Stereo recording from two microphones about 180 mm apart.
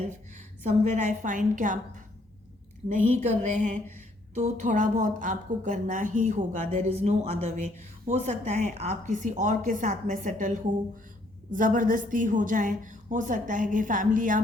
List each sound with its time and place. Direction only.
0.1 s a woman's voice: 40° right (ahead or behind)
2.9 s a woman's voice: 40° right (ahead or behind)